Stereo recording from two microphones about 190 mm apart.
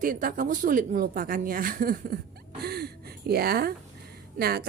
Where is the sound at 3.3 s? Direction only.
55° right (ahead or behind).